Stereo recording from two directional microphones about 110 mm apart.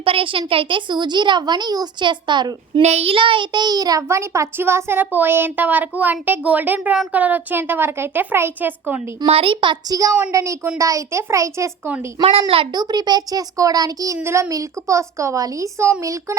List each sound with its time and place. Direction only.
0.0 s speech: 55° right (ahead or behind)
2.8 s a child's voice: 75° right (ahead or behind); by 9.0 s 15° right (ahead or behind)
9.2 s speech: 60° right (ahead or behind)
9.9 s a child's voice: 35° right (ahead or behind)